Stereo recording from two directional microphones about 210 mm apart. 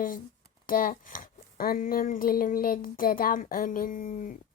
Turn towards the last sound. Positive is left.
turn(degrees=40)  # may be behind; listen again after turning